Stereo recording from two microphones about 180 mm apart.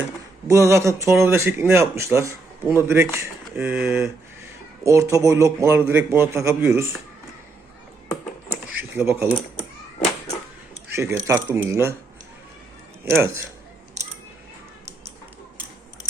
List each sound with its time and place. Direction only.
0.4 s speech: 15° right (ahead or behind)
3.6 s speech: 5° right (ahead or behind)
3.8 s speech: 15° right (ahead or behind)
8.8 s speech: 10° right (ahead or behind)
9.6 s a sound: 35° left (ahead or behind)
10.9 s speech: 15° right (ahead or behind)
13.1 s speech: 15° right (ahead or behind)